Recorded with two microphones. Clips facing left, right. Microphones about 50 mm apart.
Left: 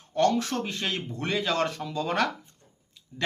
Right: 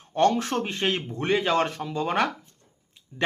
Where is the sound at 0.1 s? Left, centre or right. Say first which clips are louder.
Right 2 dB; right.